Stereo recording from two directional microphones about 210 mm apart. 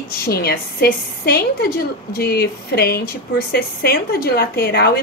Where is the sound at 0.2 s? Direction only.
50° left (ahead or behind).